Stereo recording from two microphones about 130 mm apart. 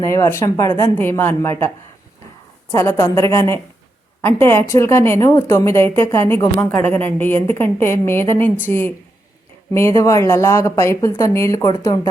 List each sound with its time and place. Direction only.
0.0 s speech: 25° left (ahead or behind)
2.7 s a woman's voice: 20° left (ahead or behind)